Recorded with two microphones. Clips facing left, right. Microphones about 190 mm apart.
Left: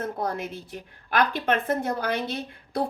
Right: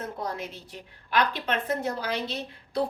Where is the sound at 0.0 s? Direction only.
55° left (ahead or behind).